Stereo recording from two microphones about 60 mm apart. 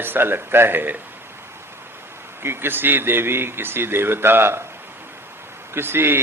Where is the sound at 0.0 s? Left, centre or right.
Right.